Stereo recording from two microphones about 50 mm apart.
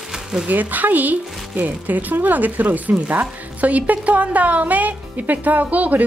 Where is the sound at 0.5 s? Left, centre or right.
Right.